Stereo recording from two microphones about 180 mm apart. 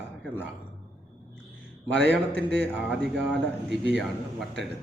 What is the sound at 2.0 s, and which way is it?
A man's voice, 65° right (ahead or behind).